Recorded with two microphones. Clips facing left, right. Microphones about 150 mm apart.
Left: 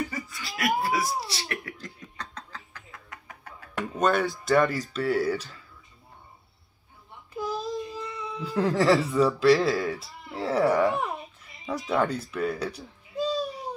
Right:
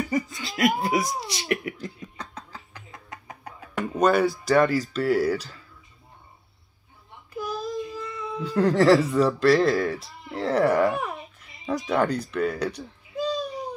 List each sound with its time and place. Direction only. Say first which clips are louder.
0.1 s a sound: right 9 dB; 20° right (ahead or behind)
3.7 s speech: right 4 dB; centre (ahead or behind)
7.3 s child singing: right 1 dB; 20° left (ahead or behind)
8.4 s speech: right 4 dB; centre (ahead or behind)